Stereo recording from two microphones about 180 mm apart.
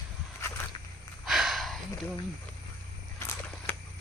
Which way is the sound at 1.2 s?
Centre (ahead or behind).